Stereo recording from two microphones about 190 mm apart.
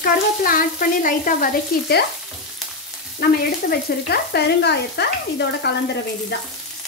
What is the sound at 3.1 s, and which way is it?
Sizzle, 55° left (ahead or behind).